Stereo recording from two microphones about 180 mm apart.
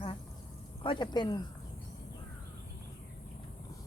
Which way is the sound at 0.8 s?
25° left (ahead or behind).